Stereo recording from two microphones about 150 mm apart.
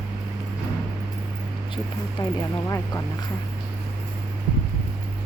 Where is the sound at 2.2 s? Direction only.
30° left (ahead or behind).